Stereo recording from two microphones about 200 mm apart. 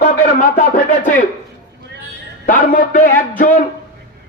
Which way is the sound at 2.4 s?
40° left (ahead or behind).